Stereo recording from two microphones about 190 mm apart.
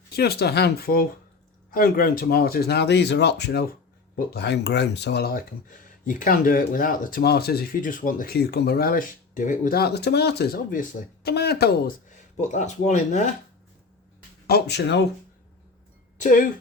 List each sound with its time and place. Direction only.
0.2 s speech: 55° left (ahead or behind)
6.1 s speech: 45° left (ahead or behind)
12.0 s speech: 40° left (ahead or behind)
14.4 s speech: 55° left (ahead or behind)
16.1 s speech: 45° left (ahead or behind)